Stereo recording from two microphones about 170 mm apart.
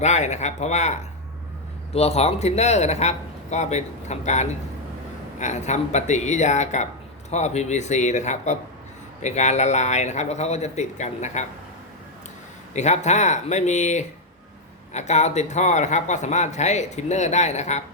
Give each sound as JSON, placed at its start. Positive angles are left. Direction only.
{"t": 0.0, "sound": "a man's voice", "side_deg": 40}
{"t": 12.7, "sound": "a man's voice", "side_deg": 40}